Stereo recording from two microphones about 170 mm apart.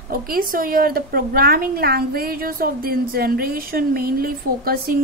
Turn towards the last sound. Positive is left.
turn(degrees=-60)  # may be behind; listen again after turning